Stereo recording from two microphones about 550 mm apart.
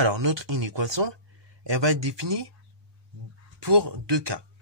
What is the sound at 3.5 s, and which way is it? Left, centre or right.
Speech, right.